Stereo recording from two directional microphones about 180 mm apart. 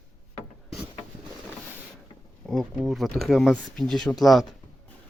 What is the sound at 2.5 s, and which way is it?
Speech, centre (ahead or behind).